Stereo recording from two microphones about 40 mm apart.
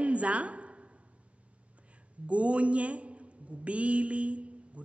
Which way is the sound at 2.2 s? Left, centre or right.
Right.